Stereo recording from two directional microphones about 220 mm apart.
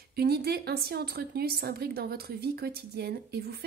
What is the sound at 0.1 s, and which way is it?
A woman's voice, 45° right (ahead or behind).